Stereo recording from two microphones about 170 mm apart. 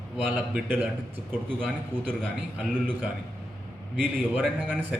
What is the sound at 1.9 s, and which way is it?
Speech, 30° right (ahead or behind).